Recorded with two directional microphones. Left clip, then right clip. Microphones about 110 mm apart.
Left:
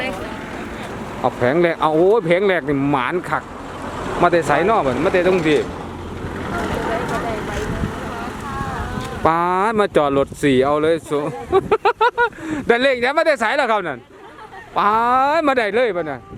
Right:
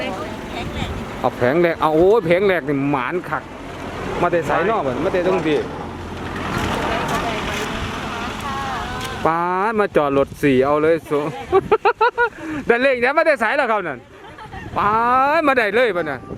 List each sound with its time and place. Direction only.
1.2 s speech: 5° left (ahead or behind); by 3.4 s 20° left (ahead or behind)
4.2 s speech: 35° left (ahead or behind)
6.4 s vehicle: 10° right (ahead or behind)
9.2 s speech: 15° left (ahead or behind); by 16.1 s centre (ahead or behind)